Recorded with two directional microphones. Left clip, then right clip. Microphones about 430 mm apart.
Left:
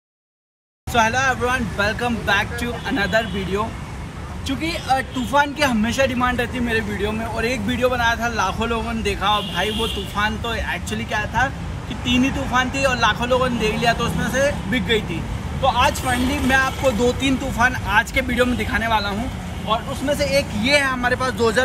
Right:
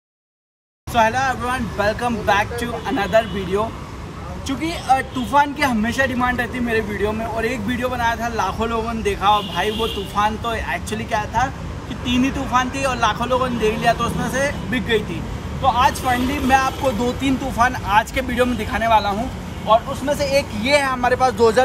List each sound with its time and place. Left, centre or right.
0.9 s a man's voice: centre
12.0 s speech: right
12.5 s a man's voice: centre